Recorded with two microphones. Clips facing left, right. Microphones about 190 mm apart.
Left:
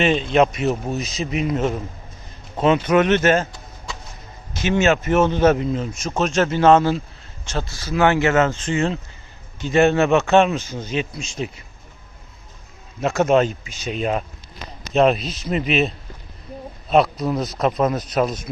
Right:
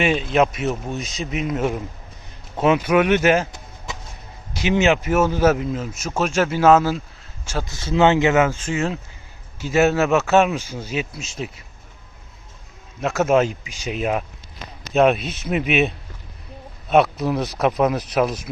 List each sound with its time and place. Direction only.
0.0 s speech: 5° right (ahead or behind)
7.7 s speech: 25° right (ahead or behind); by 11.6 s centre (ahead or behind)
13.0 s speech: centre (ahead or behind)